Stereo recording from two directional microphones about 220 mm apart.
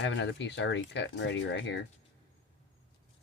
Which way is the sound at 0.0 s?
55° left (ahead or behind).